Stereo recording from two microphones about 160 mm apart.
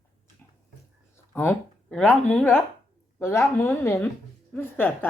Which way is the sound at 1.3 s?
15° left (ahead or behind).